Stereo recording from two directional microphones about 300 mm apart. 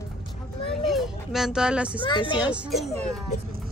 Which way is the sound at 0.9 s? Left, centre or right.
Centre.